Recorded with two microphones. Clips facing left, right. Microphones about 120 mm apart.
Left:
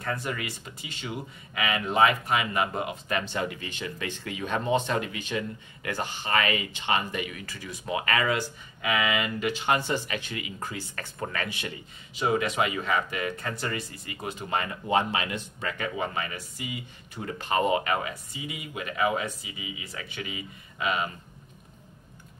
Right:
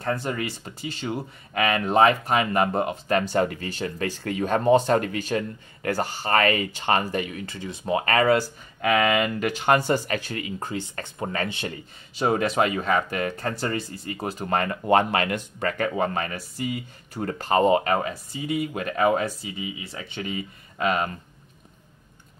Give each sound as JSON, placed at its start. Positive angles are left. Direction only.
{"t": 0.0, "sound": "speech", "side_deg": -30}
{"t": 10.6, "sound": "speech", "side_deg": -25}
{"t": 11.7, "sound": "speech", "side_deg": -45}